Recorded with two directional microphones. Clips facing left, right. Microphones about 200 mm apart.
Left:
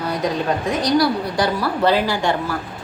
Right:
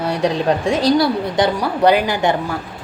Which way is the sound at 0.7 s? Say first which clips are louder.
Right 1 dB; 30° right (ahead or behind).